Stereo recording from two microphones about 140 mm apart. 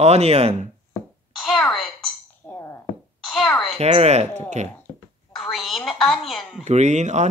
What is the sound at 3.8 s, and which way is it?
Speech, 50° right (ahead or behind).